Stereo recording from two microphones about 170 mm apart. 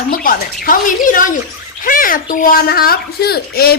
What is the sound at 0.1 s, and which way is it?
Speech, 55° left (ahead or behind).